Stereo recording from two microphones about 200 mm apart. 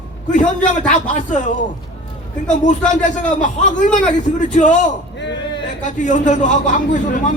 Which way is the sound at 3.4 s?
40° left (ahead or behind).